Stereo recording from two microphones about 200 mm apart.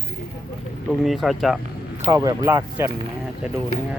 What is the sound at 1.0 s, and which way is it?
Speech, centre (ahead or behind).